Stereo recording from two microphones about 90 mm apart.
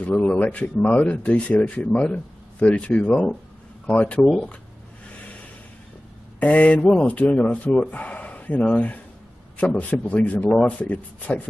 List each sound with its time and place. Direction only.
0.0 s speech: 15° left (ahead or behind)
6.4 s speech: 15° left (ahead or behind)